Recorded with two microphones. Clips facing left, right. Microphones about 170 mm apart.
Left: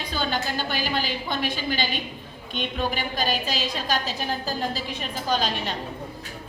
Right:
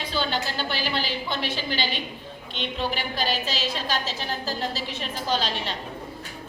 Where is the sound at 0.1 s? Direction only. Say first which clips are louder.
Left 1 dB; 45° left (ahead or behind).